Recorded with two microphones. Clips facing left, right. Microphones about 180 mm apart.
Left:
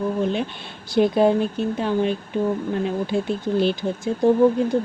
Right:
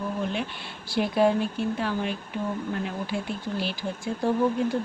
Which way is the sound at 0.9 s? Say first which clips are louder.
Left 5 dB; 25° left (ahead or behind).